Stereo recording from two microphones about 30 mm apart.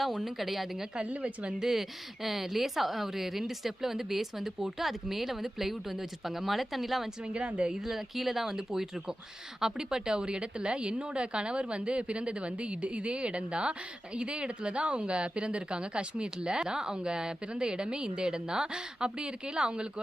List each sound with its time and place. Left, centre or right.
0.0 s speech: centre
1.0 s a woman's voice: right
1.6 s speech: centre
7.3 s a woman's voice: right
7.8 s a woman's voice: centre; by 19.9 s right